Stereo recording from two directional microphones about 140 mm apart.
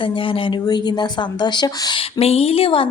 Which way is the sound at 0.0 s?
40° left (ahead or behind).